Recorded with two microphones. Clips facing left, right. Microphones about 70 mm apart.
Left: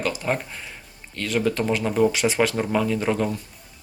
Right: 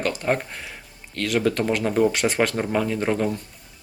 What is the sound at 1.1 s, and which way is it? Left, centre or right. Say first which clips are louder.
Speech: right 1 dB; right.